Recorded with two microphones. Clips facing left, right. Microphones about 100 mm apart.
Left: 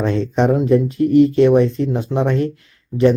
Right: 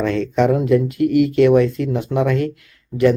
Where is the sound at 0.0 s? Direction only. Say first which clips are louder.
Even; 30° left (ahead or behind).